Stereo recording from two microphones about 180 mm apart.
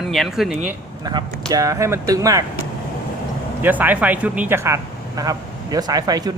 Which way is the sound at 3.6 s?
10° right (ahead or behind).